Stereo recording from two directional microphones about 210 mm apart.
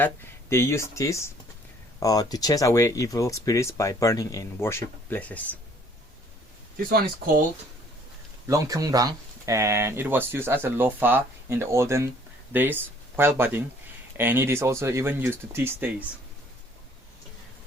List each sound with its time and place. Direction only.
0.5 s speech: 10° left (ahead or behind)
6.9 s speech: 45° right (ahead or behind)
8.4 s speech: 15° right (ahead or behind)